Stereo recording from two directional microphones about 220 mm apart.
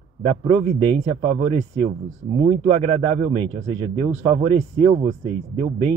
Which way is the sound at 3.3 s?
20° right (ahead or behind).